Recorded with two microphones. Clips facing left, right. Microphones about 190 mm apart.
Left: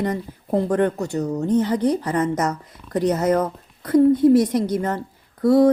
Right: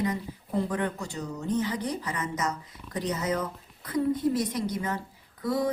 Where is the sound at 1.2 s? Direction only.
45° left (ahead or behind).